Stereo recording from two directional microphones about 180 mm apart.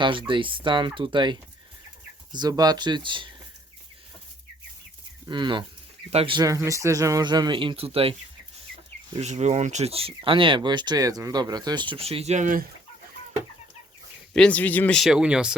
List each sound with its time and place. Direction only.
0.0 s speech: 25° right (ahead or behind)
5.3 s speech: 25° right (ahead or behind)
9.2 s speech: 40° right (ahead or behind)
14.3 s speech: 5° left (ahead or behind)